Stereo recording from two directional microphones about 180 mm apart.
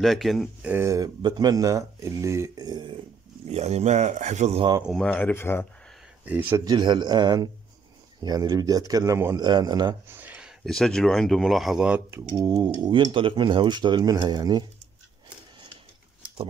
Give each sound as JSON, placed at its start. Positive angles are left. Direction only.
{"t": 0.0, "sound": "speech", "side_deg": 0}
{"t": 3.4, "sound": "speech", "side_deg": -35}
{"t": 4.8, "sound": "speech", "side_deg": 5}
{"t": 6.2, "sound": "speech", "side_deg": -10}
{"t": 6.6, "sound": "speech", "side_deg": -25}
{"t": 10.0, "sound": "speech", "side_deg": -10}
{"t": 12.4, "sound": "speech", "side_deg": -20}